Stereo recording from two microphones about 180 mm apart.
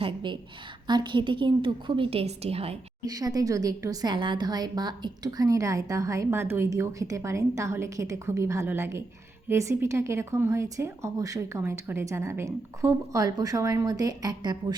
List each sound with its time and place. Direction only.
0.0 s a sound: 25° right (ahead or behind)
0.9 s a woman's voice: 25° right (ahead or behind)
3.1 s a woman's voice: 20° right (ahead or behind)